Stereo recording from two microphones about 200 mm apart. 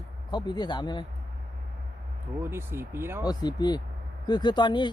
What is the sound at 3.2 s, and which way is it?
Speech, 20° left (ahead or behind).